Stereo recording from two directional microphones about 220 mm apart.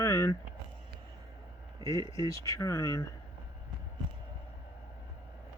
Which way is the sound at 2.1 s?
15° left (ahead or behind).